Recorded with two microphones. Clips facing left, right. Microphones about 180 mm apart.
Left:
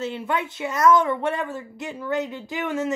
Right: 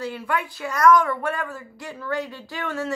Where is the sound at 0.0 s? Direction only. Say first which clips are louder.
Left 1 dB; 20° left (ahead or behind).